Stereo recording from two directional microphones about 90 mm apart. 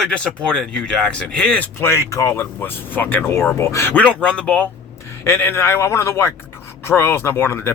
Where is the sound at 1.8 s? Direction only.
30° left (ahead or behind).